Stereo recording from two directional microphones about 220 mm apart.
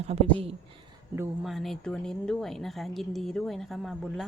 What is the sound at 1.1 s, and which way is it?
Speech, 10° right (ahead or behind).